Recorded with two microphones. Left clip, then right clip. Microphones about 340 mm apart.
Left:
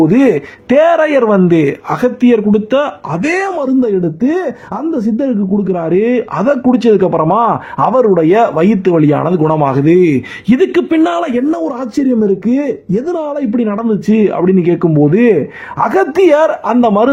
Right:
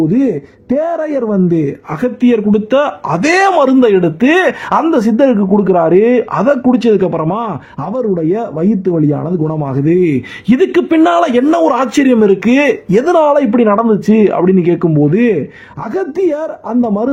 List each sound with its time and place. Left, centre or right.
0.0 s speech: left; by 5.3 s right
5.6 s speech: centre; by 9.5 s left
9.5 s a man's voice: centre
15.8 s speech: left